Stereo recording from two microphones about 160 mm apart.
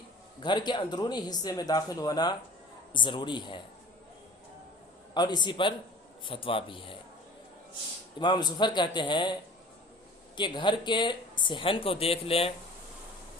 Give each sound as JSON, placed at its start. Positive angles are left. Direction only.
{"t": 0.3, "sound": "speech", "side_deg": 30}
{"t": 5.1, "sound": "speech", "side_deg": 25}
{"t": 8.2, "sound": "speech", "side_deg": 25}
{"t": 10.3, "sound": "speech", "side_deg": 30}